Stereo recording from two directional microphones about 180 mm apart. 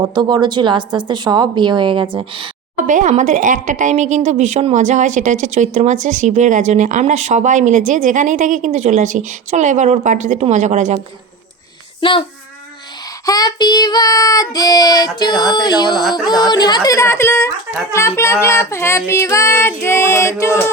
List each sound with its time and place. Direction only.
0.0 s speech: 25° right (ahead or behind)
2.8 s a woman's voice: 45° right (ahead or behind)
11.9 s a child's voice: 30° left (ahead or behind)
13.2 s child singing: 20° left (ahead or behind)